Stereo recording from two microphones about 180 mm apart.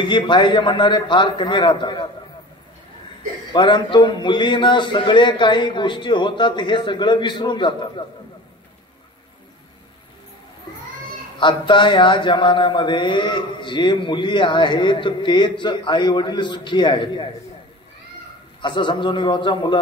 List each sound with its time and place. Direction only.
0.0 s a man's voice: 25° left (ahead or behind)
3.5 s a man's voice: 25° left (ahead or behind)
11.3 s a man's voice: 25° left (ahead or behind)
18.6 s a man's voice: 25° left (ahead or behind)